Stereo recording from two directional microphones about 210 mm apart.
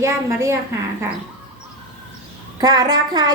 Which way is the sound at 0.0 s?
15° right (ahead or behind).